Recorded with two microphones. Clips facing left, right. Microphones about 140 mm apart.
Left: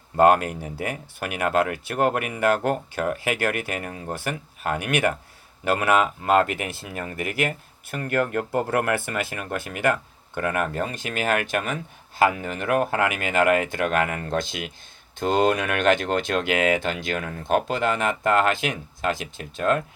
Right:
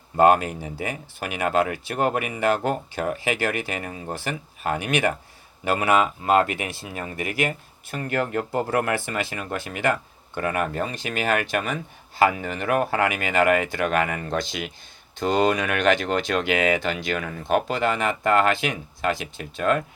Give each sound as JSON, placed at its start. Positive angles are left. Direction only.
{"t": 0.2, "sound": "speech", "side_deg": 55}